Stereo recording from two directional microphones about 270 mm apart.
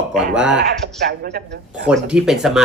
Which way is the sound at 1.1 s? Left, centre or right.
Right.